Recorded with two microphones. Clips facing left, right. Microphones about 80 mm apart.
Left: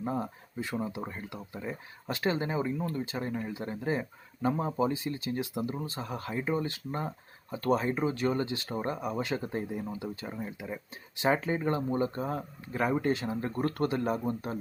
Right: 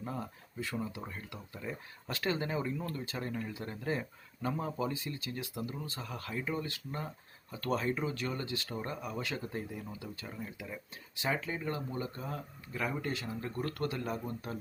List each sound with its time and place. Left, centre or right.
0.0 s speech: left